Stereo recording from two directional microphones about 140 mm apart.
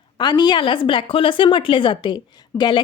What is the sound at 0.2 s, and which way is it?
Speech, 30° left (ahead or behind).